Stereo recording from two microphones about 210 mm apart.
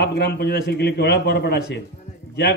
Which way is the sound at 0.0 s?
50° left (ahead or behind).